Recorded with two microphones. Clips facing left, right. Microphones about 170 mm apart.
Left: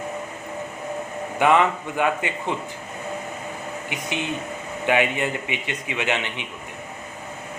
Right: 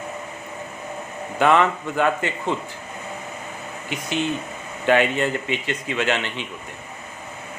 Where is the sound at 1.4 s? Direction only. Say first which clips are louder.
Right 1 dB; 15° left (ahead or behind).